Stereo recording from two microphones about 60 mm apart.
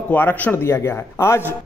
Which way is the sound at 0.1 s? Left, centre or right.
Left.